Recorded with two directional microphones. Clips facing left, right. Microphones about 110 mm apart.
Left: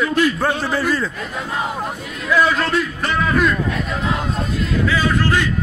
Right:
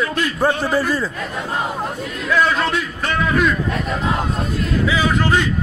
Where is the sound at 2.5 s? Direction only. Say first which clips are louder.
Left 1 dB; centre (ahead or behind).